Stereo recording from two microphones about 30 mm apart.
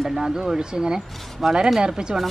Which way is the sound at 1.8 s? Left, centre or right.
Right.